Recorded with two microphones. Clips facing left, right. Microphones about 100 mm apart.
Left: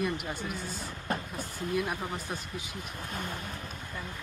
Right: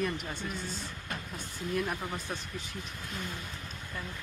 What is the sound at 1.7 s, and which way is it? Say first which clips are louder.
Speech: left 1 dB; 5° left (ahead or behind).